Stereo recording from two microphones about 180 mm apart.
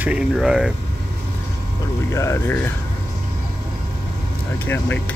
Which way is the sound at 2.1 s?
15° left (ahead or behind).